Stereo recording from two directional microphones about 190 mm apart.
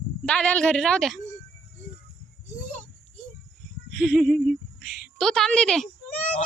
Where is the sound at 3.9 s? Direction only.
5° left (ahead or behind).